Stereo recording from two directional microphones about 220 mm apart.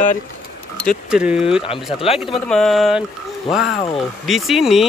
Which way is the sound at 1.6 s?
25° left (ahead or behind).